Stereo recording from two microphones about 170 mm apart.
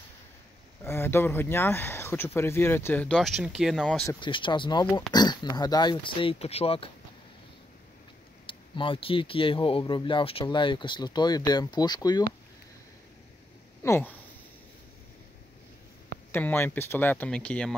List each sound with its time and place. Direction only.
0.8 s speech: 15° left (ahead or behind)
4.1 s speech: 30° left (ahead or behind)
8.5 s speech: 30° left (ahead or behind)
13.8 s speech: 15° left (ahead or behind)
16.3 s speech: 10° left (ahead or behind)